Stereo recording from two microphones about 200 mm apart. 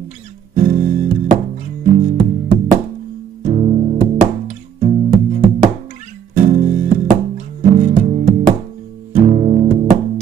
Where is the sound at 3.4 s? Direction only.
35° right (ahead or behind).